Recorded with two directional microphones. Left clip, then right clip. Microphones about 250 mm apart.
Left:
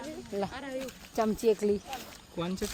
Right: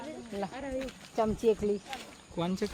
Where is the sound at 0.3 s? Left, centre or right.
Left.